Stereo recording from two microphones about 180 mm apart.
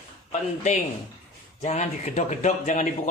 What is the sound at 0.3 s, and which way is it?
A man's voice, 40° left (ahead or behind).